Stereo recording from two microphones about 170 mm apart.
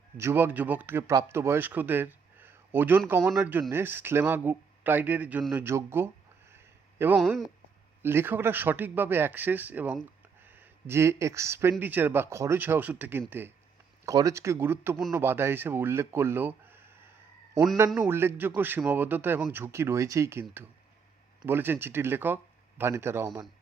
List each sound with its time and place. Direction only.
0.2 s speech: 15° right (ahead or behind)
7.2 s speech: centre (ahead or behind)
8.0 s speech: 15° right (ahead or behind)
18.1 s speech: 15° right (ahead or behind)